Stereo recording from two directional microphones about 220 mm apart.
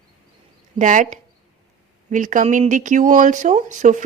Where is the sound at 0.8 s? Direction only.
35° right (ahead or behind).